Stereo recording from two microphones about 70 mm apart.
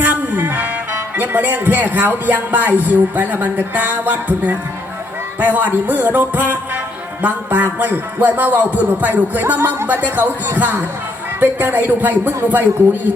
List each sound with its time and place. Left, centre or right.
0.0 s music: right
1.1 s speech: right